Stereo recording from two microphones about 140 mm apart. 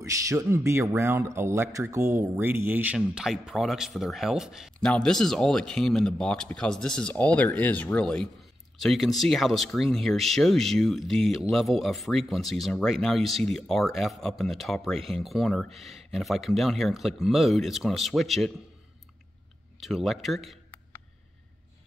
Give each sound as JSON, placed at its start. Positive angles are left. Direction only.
{"t": 0.0, "sound": "speech", "side_deg": -20}
{"t": 19.8, "sound": "speech", "side_deg": 0}